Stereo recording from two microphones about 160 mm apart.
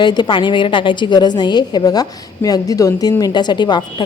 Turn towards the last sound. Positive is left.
turn(degrees=25)  # may be behind; listen again after turning